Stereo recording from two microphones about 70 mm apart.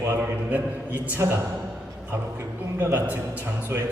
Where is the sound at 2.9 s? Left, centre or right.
Right.